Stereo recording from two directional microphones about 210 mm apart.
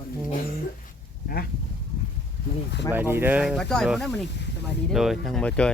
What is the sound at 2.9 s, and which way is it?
Speech, 10° right (ahead or behind).